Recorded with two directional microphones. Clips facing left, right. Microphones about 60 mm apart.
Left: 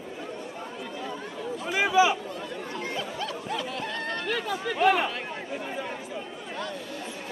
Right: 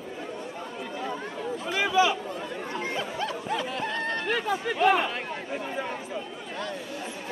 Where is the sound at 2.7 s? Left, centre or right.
Right.